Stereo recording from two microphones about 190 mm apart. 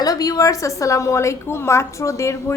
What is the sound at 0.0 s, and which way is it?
A woman's voice, 20° left (ahead or behind).